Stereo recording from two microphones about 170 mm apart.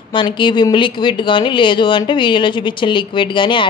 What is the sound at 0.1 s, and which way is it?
A woman's voice, 30° left (ahead or behind).